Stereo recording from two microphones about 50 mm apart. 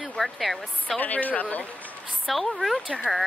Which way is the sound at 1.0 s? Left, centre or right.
Left.